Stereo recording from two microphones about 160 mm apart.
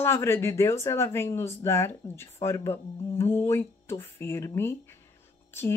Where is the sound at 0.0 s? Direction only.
15° left (ahead or behind).